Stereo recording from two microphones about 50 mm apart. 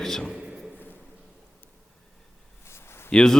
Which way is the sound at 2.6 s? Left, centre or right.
Left.